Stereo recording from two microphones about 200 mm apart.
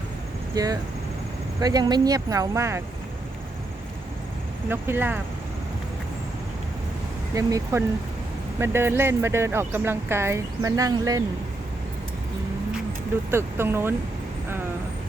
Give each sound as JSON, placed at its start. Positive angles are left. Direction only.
{"t": 0.5, "sound": "speech", "side_deg": -20}
{"t": 4.7, "sound": "speech", "side_deg": -10}
{"t": 7.3, "sound": "speech", "side_deg": -15}
{"t": 13.3, "sound": "speech", "side_deg": -10}